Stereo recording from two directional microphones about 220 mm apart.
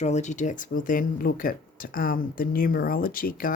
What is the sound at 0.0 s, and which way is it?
Speech, 30° left (ahead or behind).